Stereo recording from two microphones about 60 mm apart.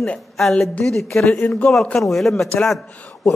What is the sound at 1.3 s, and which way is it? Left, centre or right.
Speech, left.